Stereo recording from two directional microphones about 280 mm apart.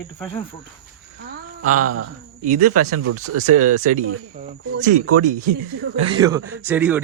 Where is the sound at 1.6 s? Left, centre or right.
Right.